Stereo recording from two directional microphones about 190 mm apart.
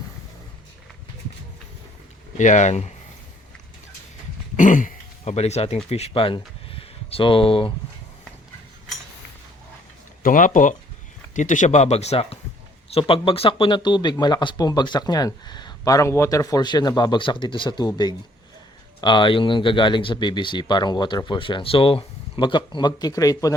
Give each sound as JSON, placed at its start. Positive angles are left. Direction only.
{"t": 2.4, "sound": "speech", "side_deg": 40}
{"t": 4.5, "sound": "speech", "side_deg": 45}
{"t": 10.2, "sound": "speech", "side_deg": 45}